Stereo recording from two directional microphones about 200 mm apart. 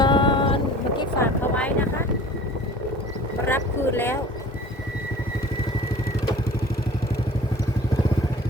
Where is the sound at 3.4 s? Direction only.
10° left (ahead or behind).